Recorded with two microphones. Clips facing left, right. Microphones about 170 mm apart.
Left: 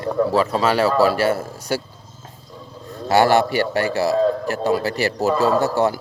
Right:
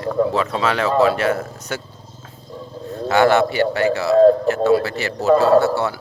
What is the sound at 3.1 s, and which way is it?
Speech, 40° left (ahead or behind).